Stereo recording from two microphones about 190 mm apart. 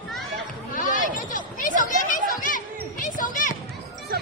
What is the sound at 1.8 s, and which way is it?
Chatter, 45° left (ahead or behind).